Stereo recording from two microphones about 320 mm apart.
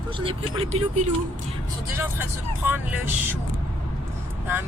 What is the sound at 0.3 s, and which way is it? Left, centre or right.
Speech, centre.